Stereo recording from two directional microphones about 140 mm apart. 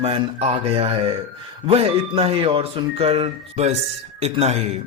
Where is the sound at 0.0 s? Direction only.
45° right (ahead or behind).